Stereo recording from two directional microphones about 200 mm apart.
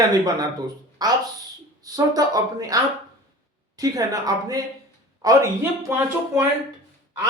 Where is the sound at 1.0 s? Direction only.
20° right (ahead or behind).